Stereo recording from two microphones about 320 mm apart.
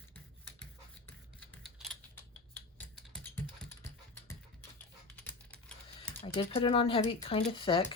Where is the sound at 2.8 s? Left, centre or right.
Centre.